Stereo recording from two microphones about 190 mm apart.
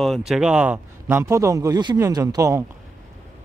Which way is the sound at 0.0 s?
Centre (ahead or behind).